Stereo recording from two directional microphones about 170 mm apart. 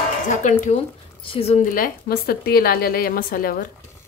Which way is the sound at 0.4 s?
45° left (ahead or behind).